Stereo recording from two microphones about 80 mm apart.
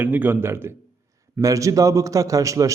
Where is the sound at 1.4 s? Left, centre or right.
Right.